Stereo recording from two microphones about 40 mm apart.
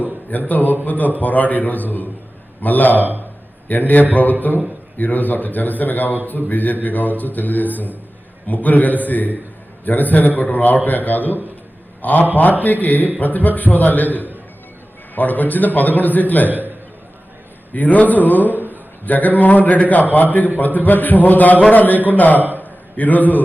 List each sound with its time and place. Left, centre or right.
0.3 s a man's voice: left
3.0 s a man's voice: right
3.7 s a man's voice: left
15.1 s a man's voice: left
16.5 s a sound: right
17.7 s a man's voice: left
18.5 s a sound: right
19.0 s a man's voice: left
22.5 s a sound: left